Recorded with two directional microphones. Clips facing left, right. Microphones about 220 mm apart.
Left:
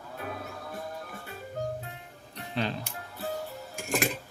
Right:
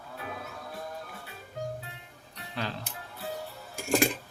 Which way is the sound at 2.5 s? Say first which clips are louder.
Left 4 dB; 20° left (ahead or behind).